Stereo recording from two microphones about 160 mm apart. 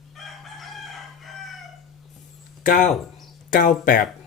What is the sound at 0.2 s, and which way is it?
Chicken, centre (ahead or behind).